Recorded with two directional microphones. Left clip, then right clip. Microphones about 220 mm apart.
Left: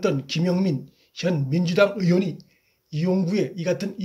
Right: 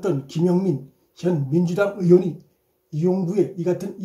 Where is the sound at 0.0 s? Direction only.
25° left (ahead or behind).